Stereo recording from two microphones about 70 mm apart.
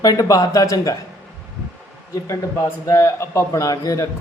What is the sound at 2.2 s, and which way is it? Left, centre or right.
A man's voice, left.